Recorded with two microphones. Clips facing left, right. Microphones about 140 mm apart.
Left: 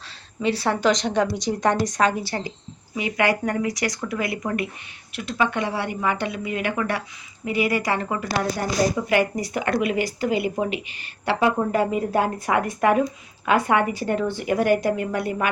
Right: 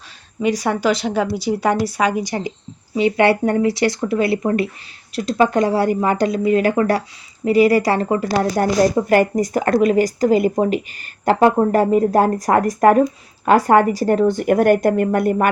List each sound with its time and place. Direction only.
0.4 s a woman's voice: 15° right (ahead or behind)
2.9 s a woman's voice: 30° right (ahead or behind)
9.0 s speech: 45° right (ahead or behind)